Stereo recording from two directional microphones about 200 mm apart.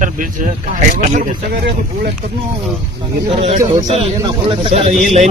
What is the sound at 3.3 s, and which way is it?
A man's voice, 30° right (ahead or behind).